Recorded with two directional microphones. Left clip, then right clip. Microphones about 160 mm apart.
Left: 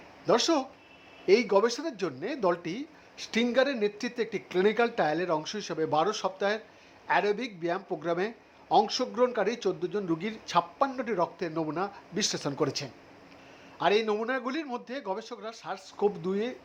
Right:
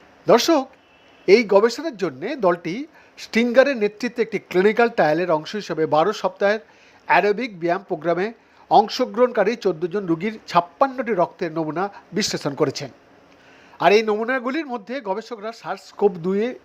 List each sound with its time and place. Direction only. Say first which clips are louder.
0.3 s speech: right 9 dB; 35° right (ahead or behind)